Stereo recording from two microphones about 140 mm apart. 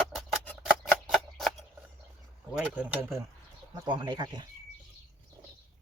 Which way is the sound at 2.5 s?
10° right (ahead or behind).